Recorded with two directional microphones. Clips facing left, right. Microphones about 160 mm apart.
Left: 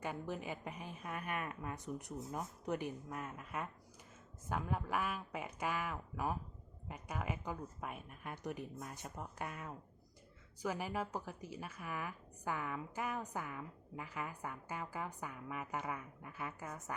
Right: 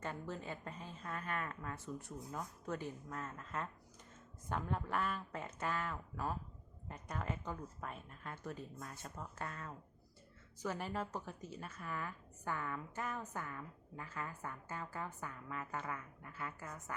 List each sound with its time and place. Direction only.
0.0 s a woman's voice: 15° left (ahead or behind)